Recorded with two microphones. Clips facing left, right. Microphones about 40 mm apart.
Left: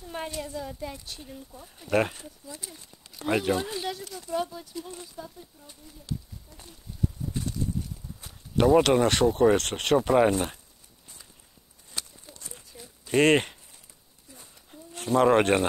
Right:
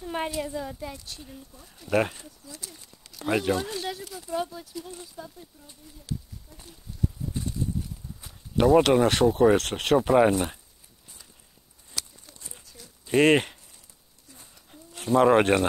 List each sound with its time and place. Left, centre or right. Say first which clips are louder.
0.0 s a sound: right 5 dB; right
0.4 s speech: right 3 dB; centre
0.9 s speech: left 1 dB; centre
1.5 s speech: left 3 dB; centre
1.9 s speech: even; centre
2.4 s speech: left 2 dB; centre
2.7 s speech: left 1 dB; centre
7.4 s a sound: right 1 dB; centre
8.2 s speech: right 1 dB; centre
12.0 s a sound: right 1 dB; left
13.0 s speech: right 1 dB; centre
15.0 s speech: right 2 dB; centre